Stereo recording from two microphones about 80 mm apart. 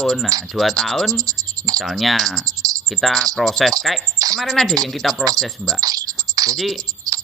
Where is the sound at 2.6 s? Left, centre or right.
Right.